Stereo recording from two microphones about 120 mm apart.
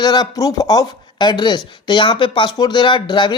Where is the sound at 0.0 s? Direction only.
35° left (ahead or behind).